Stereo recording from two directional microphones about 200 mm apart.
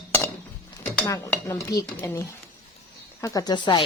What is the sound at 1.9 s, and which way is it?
A woman's voice, 10° left (ahead or behind).